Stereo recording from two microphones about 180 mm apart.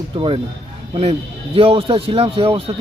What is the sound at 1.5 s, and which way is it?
Speech, 30° right (ahead or behind).